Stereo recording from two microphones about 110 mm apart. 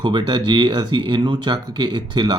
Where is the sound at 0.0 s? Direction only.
45° right (ahead or behind).